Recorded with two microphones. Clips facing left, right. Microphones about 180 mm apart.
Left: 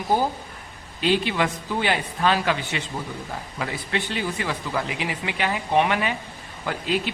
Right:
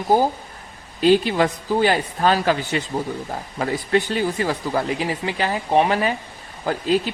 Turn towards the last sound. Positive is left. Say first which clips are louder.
# right 5 dB
turn(degrees=-40)  # may be behind; listen again after turning